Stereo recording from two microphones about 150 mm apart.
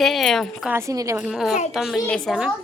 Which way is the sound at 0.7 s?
20° right (ahead or behind).